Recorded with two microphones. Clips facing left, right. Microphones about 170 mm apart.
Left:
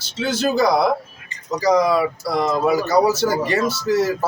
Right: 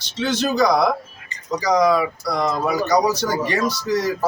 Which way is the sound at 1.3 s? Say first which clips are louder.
Right 2 dB; 35° right (ahead or behind).